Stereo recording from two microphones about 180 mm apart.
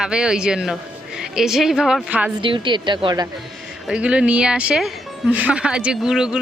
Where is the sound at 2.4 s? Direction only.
25° right (ahead or behind).